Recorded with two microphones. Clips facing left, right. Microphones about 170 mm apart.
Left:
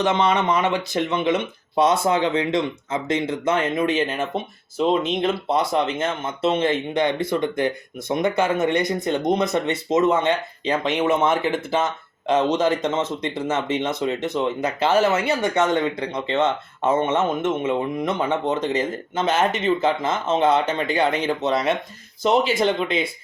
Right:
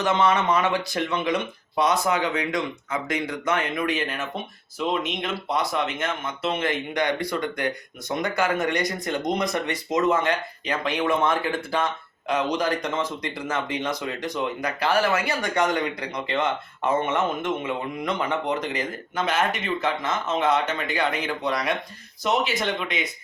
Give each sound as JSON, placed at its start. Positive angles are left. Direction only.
{"t": 0.0, "sound": "speech", "side_deg": 20}